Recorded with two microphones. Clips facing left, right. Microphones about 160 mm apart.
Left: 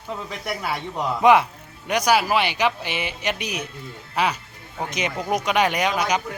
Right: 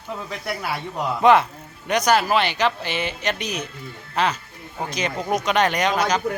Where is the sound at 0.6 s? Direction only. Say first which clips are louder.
Left 1 dB; 5° right (ahead or behind).